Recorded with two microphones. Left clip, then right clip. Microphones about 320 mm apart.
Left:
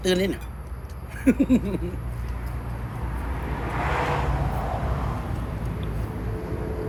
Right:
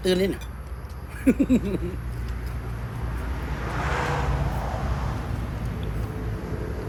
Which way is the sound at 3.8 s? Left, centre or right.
Left.